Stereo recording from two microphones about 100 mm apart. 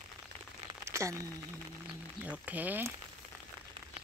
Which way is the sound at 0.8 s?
30° right (ahead or behind).